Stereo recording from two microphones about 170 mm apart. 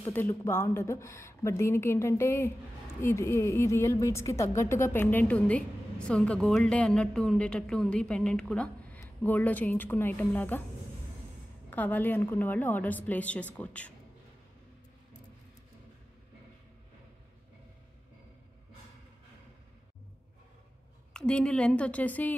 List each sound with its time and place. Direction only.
0.0 s a woman's voice: 10° left (ahead or behind)
11.7 s a woman's voice: 10° left (ahead or behind)
21.1 s a woman's voice: 5° left (ahead or behind)